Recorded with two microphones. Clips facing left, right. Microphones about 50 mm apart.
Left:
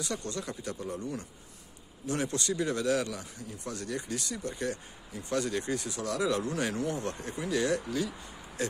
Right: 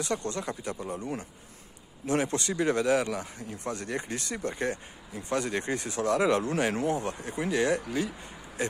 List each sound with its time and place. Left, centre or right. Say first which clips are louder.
0.0 s a man's voice: right 4 dB; right
2.0 s a man's voice: right 3 dB; right
7.0 s speech: right 2 dB; centre
7.3 s speech: right 3 dB; right